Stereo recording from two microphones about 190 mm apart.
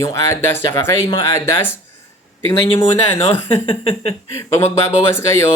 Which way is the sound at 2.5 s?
25° left (ahead or behind).